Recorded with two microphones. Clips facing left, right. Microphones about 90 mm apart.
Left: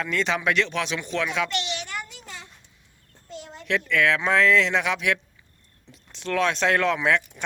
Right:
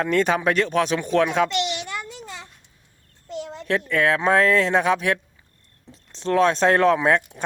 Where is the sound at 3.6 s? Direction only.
40° right (ahead or behind).